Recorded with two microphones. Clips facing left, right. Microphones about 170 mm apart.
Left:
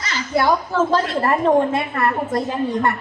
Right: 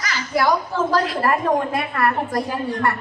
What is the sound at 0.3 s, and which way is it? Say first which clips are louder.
A woman's voice: left 2 dB; 25° left (ahead or behind).